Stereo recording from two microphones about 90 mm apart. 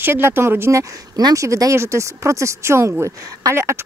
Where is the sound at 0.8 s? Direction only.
45° right (ahead or behind).